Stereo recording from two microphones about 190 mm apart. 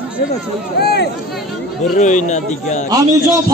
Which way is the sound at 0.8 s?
60° left (ahead or behind).